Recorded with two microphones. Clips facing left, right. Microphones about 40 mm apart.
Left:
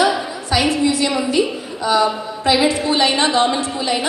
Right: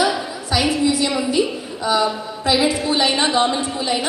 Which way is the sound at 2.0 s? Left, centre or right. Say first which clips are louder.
Left 2 dB; centre.